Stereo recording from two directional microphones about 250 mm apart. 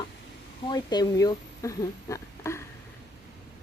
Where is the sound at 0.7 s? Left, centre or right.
Centre.